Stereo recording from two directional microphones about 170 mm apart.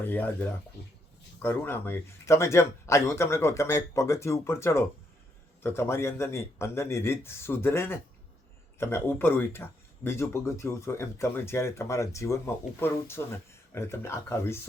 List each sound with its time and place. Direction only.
0.0 s speech: 10° left (ahead or behind)